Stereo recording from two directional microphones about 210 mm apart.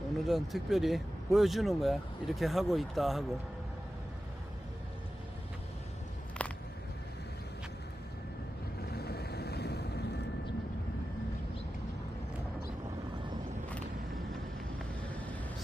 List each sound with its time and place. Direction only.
0.3 s speech: centre (ahead or behind)
6.4 s a sound: 5° left (ahead or behind)
8.9 s boat: 50° left (ahead or behind)